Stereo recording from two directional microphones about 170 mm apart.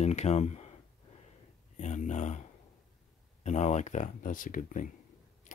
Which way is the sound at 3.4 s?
40° left (ahead or behind).